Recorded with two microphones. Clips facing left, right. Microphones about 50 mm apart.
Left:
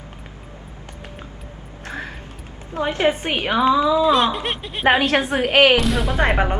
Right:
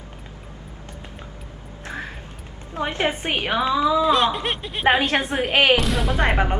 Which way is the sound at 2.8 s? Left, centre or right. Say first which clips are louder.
Left 3 dB; right.